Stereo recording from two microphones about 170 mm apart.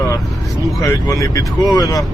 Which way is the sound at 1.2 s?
20° left (ahead or behind).